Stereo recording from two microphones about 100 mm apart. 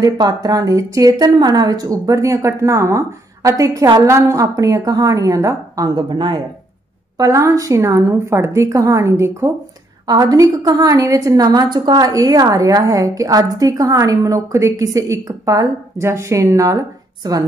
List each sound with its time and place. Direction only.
0.0 s a woman's voice: 40° right (ahead or behind)
5.9 s speech: 45° right (ahead or behind)
7.2 s a woman's voice: 30° right (ahead or behind)